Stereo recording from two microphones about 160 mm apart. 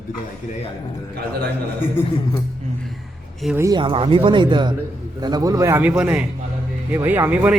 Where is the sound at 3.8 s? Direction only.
35° right (ahead or behind); by 7.5 s 10° right (ahead or behind).